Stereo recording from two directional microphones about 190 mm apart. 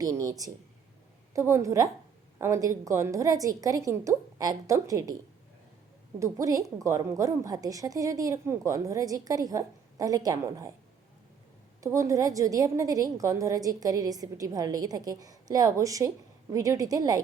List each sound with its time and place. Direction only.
0.0 s a woman's voice: 20° right (ahead or behind)
6.1 s a woman's voice: 15° right (ahead or behind)
11.8 s a woman's voice: 15° right (ahead or behind)